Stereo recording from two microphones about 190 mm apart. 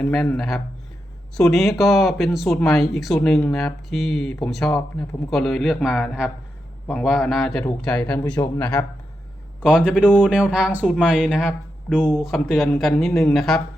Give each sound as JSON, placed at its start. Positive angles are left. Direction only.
{"t": 0.0, "sound": "speech", "side_deg": 5}
{"t": 9.6, "sound": "a man's voice", "side_deg": -5}